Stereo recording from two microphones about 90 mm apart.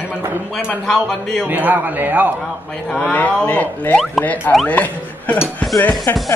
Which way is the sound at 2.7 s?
10° left (ahead or behind).